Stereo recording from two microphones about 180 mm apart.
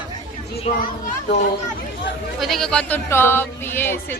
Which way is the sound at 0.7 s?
35° left (ahead or behind).